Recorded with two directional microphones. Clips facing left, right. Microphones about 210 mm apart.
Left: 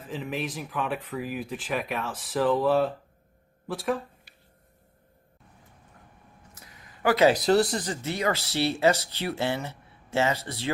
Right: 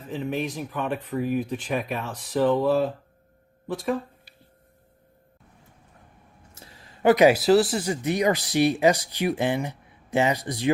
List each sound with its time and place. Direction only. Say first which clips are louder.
0.0 s speech: right 4 dB; centre (ahead or behind)
6.5 s speech: right 5 dB; 30° right (ahead or behind)